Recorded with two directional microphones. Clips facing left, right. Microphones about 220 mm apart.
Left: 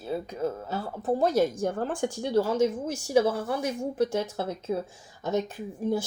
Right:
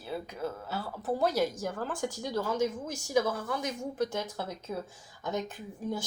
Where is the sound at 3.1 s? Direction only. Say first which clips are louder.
Left 5 dB; 30° left (ahead or behind).